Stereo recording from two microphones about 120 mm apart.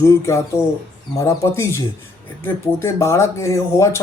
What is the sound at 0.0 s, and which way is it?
Speech, 25° left (ahead or behind).